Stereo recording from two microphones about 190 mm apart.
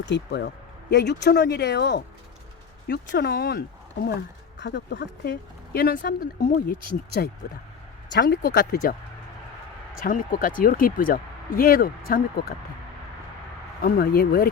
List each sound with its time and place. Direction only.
0.0 s speech: 65° left (ahead or behind)
4.6 s speech: 65° left (ahead or behind); by 12.2 s 50° left (ahead or behind)
13.8 s speech: 50° left (ahead or behind)